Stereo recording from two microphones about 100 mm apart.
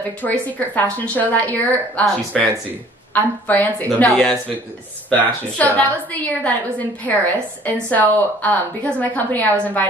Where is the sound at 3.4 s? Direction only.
15° left (ahead or behind).